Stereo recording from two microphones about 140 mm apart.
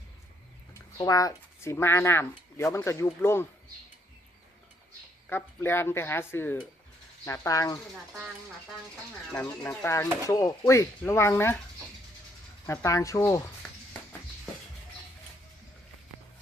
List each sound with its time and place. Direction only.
1.0 s speech: 25° left (ahead or behind)
5.3 s speech: 15° left (ahead or behind)
9.3 s speech: 15° left (ahead or behind)
12.6 s speech: 20° left (ahead or behind)